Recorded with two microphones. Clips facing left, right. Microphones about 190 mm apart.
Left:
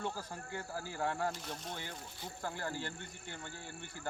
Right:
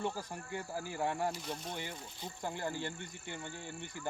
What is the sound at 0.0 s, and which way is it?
Speech, 15° right (ahead or behind).